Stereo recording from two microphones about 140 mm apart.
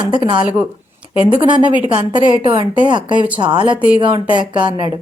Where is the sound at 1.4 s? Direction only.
35° right (ahead or behind).